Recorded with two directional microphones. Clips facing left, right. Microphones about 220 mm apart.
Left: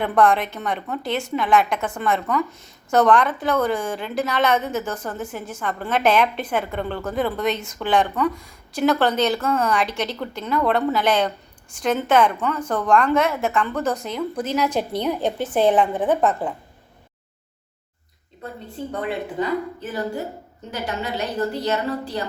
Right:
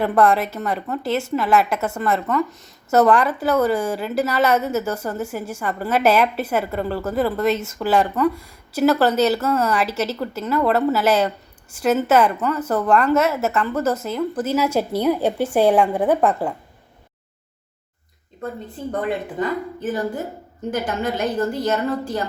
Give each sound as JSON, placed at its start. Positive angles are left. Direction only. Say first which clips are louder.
{"t": 0.0, "sound": "a woman's voice", "louder": "right 1 dB", "side_deg": -5}
{"t": 19.0, "sound": "speech", "louder": "even", "side_deg": -50}